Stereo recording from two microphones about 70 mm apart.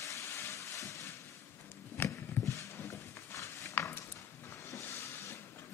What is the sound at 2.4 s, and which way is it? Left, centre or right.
Clip-clop, left.